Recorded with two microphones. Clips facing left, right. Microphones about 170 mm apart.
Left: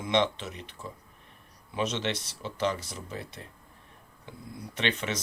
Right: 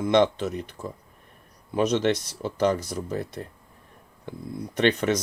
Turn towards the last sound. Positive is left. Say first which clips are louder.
# right 9 dB
turn(degrees=-45)  # may be behind; listen again after turning